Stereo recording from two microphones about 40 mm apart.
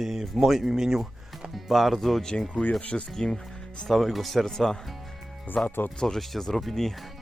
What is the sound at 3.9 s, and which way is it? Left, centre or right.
Speech, centre.